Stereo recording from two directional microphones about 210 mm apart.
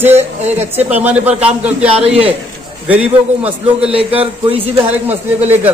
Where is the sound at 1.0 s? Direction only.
5° right (ahead or behind).